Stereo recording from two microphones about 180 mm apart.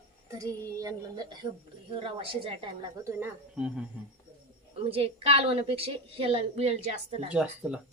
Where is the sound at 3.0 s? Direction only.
10° right (ahead or behind).